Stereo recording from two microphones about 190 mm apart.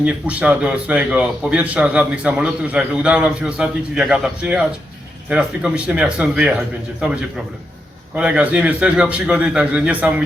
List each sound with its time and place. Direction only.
0.0 s a man's voice: 5° right (ahead or behind)